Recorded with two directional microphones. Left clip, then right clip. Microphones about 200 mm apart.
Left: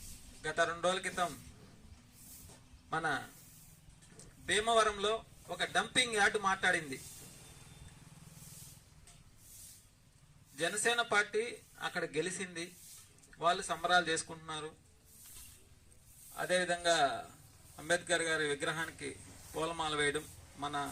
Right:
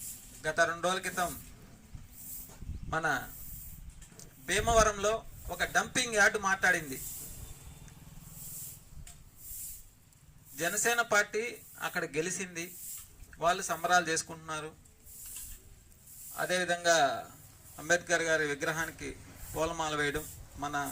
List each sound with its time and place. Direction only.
0.4 s a man's voice: 20° right (ahead or behind)
2.9 s a man's voice: 25° right (ahead or behind)
10.6 s a man's voice: 25° right (ahead or behind)
16.3 s a man's voice: 20° right (ahead or behind)